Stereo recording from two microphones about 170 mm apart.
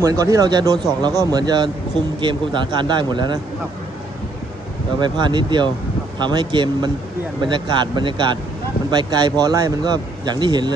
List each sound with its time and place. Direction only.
0.0 s speech: 20° right (ahead or behind)
5.0 s speech: 25° right (ahead or behind)